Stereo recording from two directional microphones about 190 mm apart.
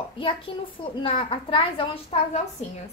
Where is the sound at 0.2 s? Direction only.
30° left (ahead or behind).